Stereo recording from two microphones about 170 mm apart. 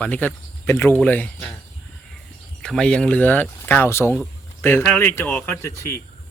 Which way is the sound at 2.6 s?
5° left (ahead or behind).